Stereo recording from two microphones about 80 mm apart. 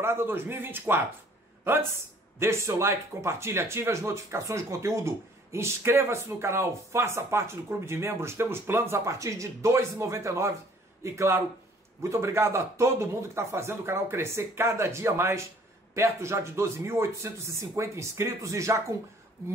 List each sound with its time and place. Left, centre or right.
0.0 s a man's voice: right